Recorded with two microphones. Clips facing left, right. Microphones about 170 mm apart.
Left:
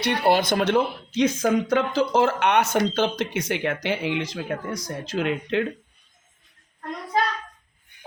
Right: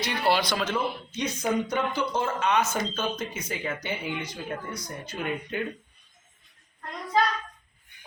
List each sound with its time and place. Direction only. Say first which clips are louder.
0.0 s speech: left 5 dB; 60° left (ahead or behind); by 5.6 s 90° left